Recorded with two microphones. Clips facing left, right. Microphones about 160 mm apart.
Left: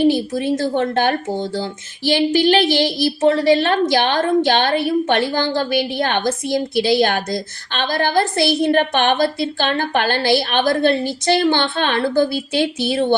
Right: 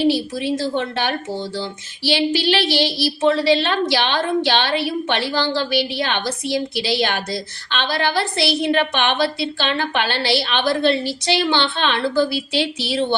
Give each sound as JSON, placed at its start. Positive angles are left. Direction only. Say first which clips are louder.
{"t": 0.0, "sound": "a woman's voice", "louder": "left 3 dB", "side_deg": 50}